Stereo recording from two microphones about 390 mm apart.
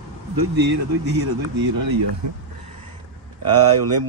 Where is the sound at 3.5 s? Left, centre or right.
Right.